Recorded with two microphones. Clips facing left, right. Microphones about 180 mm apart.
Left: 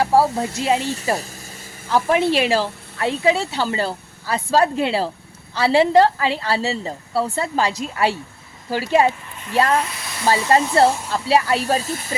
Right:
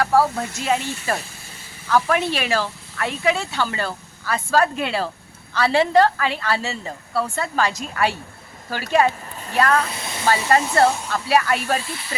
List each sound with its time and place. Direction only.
0.0 s speech: 25° left (ahead or behind)
2.0 s speech: 25° left (ahead or behind); by 12.1 s 45° left (ahead or behind)